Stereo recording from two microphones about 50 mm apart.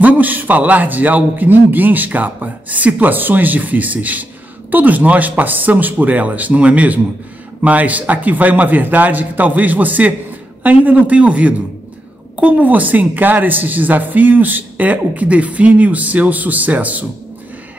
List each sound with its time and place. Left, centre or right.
0.0 s speech: right